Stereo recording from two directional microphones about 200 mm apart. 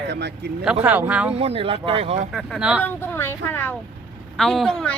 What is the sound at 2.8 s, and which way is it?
Speech, 10° left (ahead or behind).